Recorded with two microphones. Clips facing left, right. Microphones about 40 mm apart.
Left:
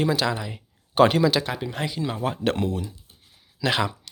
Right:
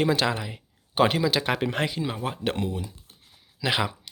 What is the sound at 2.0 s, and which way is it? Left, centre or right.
Speech, centre.